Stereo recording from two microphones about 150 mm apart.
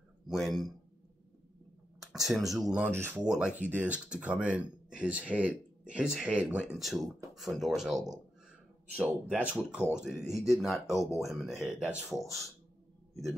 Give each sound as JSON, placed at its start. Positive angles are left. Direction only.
{"t": 0.3, "sound": "speech", "side_deg": 0}
{"t": 2.2, "sound": "speech", "side_deg": 0}
{"t": 10.9, "sound": "speech", "side_deg": 20}
{"t": 11.1, "sound": "speech", "side_deg": 0}